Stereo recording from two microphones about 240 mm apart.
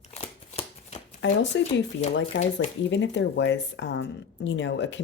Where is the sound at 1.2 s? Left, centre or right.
Left.